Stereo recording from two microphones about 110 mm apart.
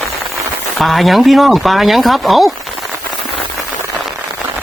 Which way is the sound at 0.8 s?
Centre (ahead or behind).